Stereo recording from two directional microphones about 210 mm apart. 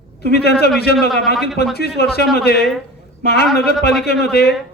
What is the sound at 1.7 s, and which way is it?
A man's voice, 50° left (ahead or behind).